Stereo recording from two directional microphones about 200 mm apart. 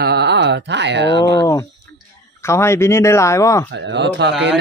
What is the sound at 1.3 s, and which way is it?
Speech, 15° left (ahead or behind).